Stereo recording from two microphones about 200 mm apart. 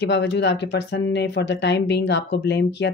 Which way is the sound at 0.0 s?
55° left (ahead or behind).